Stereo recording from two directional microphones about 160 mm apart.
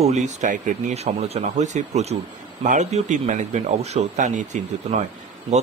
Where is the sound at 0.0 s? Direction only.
45° right (ahead or behind).